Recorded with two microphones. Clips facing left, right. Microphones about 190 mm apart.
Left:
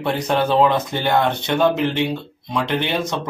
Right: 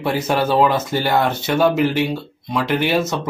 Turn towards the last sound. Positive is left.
turn(degrees=-5)  # may be behind; listen again after turning